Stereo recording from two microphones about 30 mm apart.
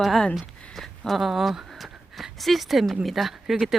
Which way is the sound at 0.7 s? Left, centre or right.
Centre.